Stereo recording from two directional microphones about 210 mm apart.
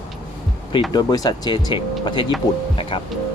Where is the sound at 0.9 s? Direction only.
20° left (ahead or behind).